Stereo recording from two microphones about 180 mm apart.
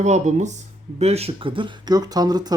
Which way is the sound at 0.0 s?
40° right (ahead or behind).